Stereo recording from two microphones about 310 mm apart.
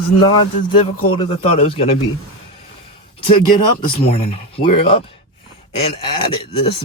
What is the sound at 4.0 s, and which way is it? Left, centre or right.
Speech, centre.